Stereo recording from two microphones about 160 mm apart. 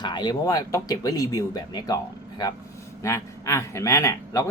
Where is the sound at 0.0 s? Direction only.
25° left (ahead or behind).